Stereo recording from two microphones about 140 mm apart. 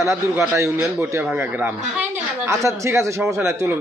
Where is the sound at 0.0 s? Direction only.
20° right (ahead or behind).